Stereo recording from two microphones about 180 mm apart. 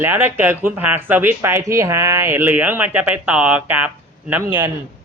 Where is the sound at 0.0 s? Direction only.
10° right (ahead or behind).